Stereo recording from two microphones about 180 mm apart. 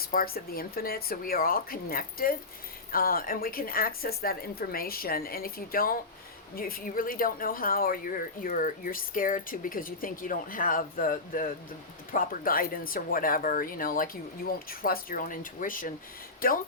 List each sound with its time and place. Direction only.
0.1 s a woman's voice: 55° left (ahead or behind)